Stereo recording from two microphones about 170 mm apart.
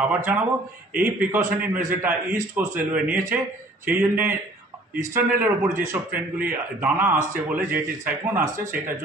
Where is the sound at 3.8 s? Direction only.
10° right (ahead or behind).